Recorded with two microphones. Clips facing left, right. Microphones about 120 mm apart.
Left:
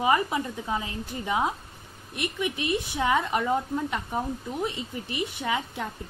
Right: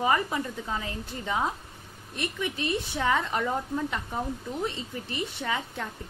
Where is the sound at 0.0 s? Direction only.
15° left (ahead or behind).